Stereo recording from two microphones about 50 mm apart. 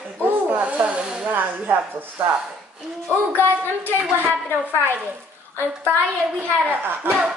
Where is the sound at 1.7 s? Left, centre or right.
Right.